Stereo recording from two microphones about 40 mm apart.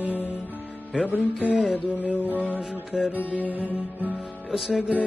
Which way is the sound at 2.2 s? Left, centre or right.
Right.